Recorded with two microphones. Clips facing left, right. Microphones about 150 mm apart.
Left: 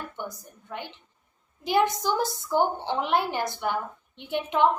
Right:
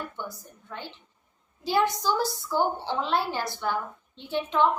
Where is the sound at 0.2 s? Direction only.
15° left (ahead or behind).